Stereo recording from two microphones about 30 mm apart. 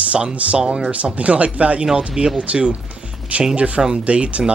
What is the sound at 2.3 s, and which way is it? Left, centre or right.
Speech, right.